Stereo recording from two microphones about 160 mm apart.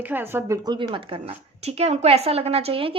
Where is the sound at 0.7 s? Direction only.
30° right (ahead or behind).